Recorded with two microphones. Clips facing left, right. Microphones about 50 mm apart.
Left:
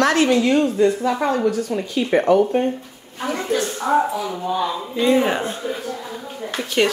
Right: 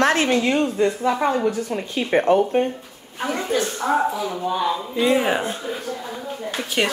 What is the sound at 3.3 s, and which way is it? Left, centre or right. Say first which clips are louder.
A woman's voice: left 1 dB; centre.